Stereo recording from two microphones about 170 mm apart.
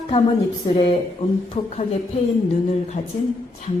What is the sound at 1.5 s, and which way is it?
Speech, 35° left (ahead or behind).